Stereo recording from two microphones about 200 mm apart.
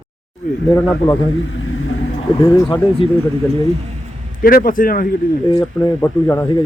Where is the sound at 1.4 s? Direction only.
80° left.